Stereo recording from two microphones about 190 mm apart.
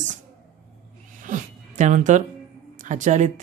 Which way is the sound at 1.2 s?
45° right (ahead or behind).